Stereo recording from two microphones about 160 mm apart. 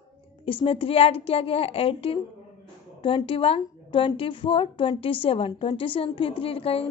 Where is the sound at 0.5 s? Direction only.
35° left (ahead or behind).